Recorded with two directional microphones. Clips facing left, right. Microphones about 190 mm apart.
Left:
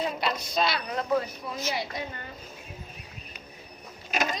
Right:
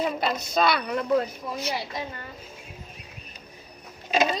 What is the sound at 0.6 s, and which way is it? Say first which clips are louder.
Speech: right 5 dB; 55° right (ahead or behind).